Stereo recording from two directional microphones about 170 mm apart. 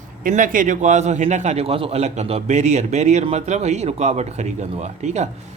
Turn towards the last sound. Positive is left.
turn(degrees=-45)  # may be behind; listen again after turning